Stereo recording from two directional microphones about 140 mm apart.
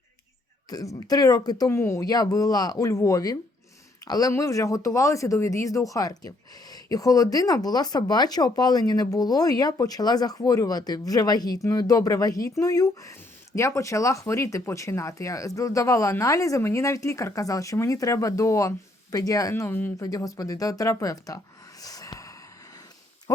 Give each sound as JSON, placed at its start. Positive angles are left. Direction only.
{"t": 0.9, "sound": "speech", "side_deg": 25}